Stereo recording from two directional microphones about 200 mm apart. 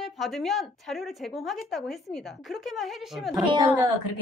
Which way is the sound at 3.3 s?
20° right (ahead or behind).